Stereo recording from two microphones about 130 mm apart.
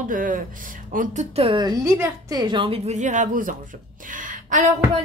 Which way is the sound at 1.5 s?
30° right (ahead or behind).